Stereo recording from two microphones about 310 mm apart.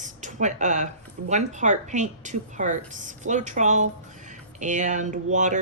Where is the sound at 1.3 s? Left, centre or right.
Right.